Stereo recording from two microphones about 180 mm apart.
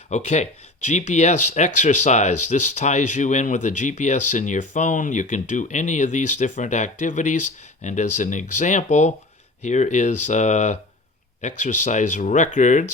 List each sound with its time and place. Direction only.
0.1 s speech: 40° left (ahead or behind)